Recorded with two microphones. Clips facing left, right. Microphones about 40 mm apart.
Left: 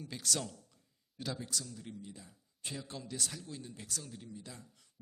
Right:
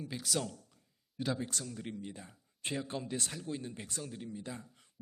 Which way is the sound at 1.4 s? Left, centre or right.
Right.